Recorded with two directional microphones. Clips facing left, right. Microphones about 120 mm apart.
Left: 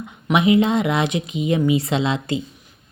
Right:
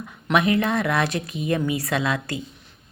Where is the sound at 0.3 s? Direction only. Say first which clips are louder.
Left 4 dB; 20° left (ahead or behind).